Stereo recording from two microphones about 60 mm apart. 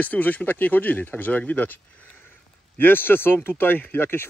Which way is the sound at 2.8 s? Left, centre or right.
Left.